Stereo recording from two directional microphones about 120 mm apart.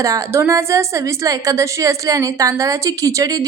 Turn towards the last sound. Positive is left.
turn(degrees=-30)  # may be behind; listen again after turning